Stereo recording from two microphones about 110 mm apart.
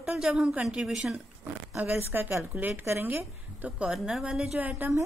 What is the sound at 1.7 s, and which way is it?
Speech, 15° right (ahead or behind).